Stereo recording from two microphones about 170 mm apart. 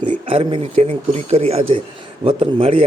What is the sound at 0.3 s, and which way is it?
A man's voice, 35° right (ahead or behind).